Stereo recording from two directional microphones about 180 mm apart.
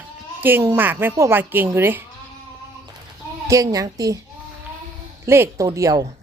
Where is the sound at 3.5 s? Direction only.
20° right (ahead or behind).